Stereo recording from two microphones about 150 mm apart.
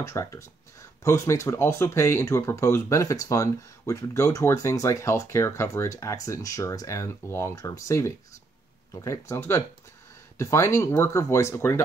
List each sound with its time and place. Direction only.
0.0 s speech: 20° left (ahead or behind)